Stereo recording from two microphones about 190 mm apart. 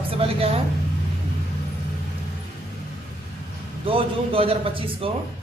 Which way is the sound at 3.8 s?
30° right (ahead or behind).